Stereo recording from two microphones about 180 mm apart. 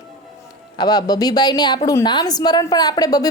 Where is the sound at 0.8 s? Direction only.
20° left (ahead or behind).